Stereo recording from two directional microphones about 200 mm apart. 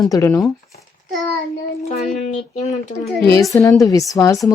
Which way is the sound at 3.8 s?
15° left (ahead or behind).